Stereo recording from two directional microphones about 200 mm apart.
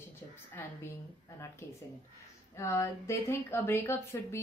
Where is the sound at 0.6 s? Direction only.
10° left (ahead or behind).